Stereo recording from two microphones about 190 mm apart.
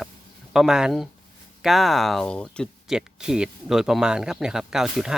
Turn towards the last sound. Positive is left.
turn(degrees=-5)  # may be behind; listen again after turning